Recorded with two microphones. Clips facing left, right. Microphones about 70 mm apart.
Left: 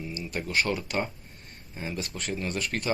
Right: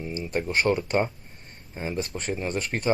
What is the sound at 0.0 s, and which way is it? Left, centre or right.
Speech, right.